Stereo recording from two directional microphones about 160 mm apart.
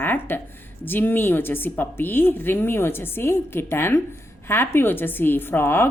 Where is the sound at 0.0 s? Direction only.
10° left (ahead or behind).